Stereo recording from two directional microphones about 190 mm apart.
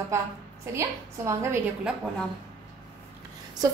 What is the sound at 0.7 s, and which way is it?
A woman's voice, 15° right (ahead or behind).